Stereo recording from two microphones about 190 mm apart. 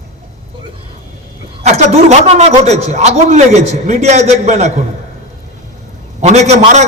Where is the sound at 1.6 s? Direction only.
35° right (ahead or behind).